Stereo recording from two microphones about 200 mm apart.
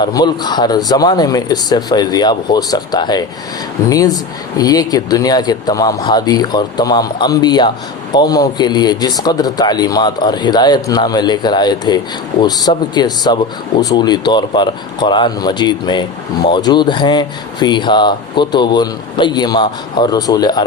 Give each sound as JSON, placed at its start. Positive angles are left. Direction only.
{"t": 0.0, "sound": "speech", "side_deg": 20}